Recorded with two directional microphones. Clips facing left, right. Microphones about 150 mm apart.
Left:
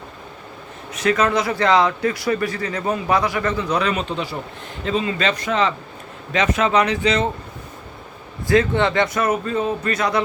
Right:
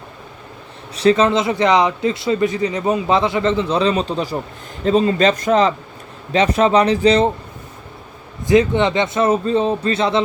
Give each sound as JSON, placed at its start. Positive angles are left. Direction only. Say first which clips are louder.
{"t": 0.9, "sound": "a man's voice", "louder": "right 5 dB", "side_deg": -30}
{"t": 8.4, "sound": "a man's voice", "louder": "right 3 dB", "side_deg": -20}